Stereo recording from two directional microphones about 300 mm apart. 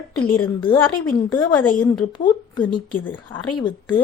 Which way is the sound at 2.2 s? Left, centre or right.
Centre.